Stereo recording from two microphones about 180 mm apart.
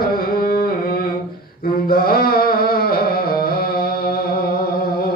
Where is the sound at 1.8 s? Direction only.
55° left (ahead or behind).